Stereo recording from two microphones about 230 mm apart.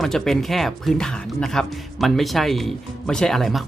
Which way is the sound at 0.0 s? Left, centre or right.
Centre.